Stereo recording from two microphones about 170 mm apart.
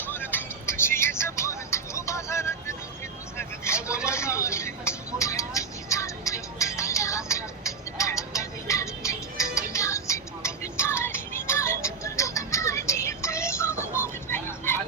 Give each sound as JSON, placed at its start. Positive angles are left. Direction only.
{"t": 0.1, "sound": "music", "side_deg": 10}
{"t": 3.3, "sound": "vehicle", "side_deg": 15}